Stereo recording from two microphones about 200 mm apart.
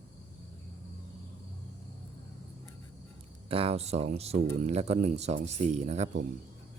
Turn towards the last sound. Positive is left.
turn(degrees=-35)  # may be behind; listen again after turning